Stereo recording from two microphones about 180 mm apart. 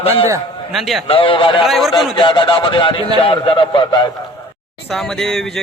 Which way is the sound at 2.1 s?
25° left (ahead or behind).